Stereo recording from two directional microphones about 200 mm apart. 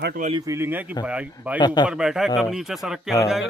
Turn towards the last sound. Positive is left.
turn(degrees=0)  # may be behind; listen again after turning